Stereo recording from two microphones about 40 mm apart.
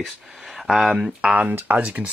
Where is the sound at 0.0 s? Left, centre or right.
Centre.